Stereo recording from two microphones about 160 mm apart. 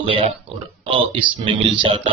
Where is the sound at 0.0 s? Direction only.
35° right (ahead or behind).